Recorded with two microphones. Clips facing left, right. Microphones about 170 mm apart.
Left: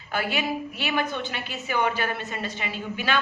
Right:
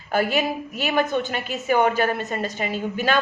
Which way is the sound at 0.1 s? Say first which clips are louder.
Right 5 dB; 45° right (ahead or behind).